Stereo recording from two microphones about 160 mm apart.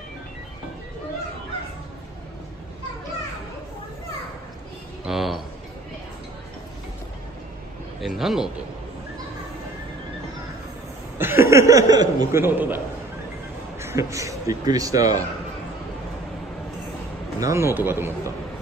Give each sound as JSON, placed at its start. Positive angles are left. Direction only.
{"t": 5.0, "sound": "a sound", "side_deg": 0}
{"t": 8.0, "sound": "a man's voice", "side_deg": 0}
{"t": 11.1, "sound": "a man's voice", "side_deg": -15}
{"t": 17.4, "sound": "a man's voice", "side_deg": -15}